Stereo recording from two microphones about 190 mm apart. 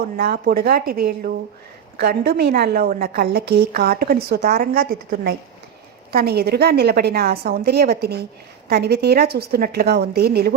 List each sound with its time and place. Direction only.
0.2 s a woman's voice: 50° right (ahead or behind)